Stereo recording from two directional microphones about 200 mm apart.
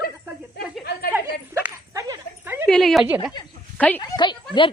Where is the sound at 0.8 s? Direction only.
55° left (ahead or behind).